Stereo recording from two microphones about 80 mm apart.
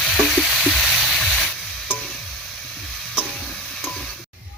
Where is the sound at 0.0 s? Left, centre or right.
Centre.